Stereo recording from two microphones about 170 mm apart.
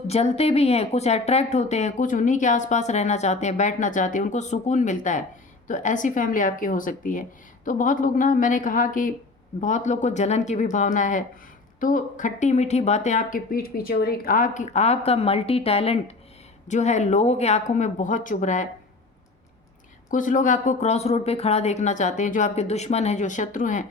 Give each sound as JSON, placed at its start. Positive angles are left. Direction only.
{"t": 0.1, "sound": "speech", "side_deg": 35}
{"t": 20.1, "sound": "speech", "side_deg": 50}